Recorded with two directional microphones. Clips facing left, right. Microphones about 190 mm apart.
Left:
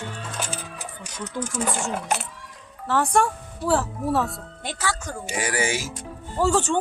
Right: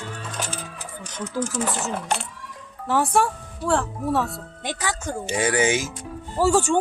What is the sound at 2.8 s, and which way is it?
Speech, 10° right (ahead or behind).